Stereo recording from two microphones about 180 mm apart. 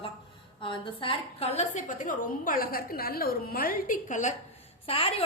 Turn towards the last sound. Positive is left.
turn(degrees=30)  # may be behind; listen again after turning